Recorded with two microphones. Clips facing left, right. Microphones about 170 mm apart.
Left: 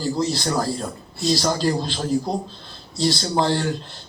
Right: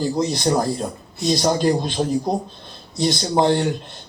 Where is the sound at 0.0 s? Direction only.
20° right (ahead or behind).